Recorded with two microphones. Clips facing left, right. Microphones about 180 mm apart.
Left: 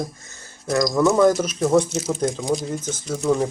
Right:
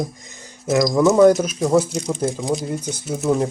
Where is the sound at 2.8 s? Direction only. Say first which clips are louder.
Right 1 dB; 10° right (ahead or behind).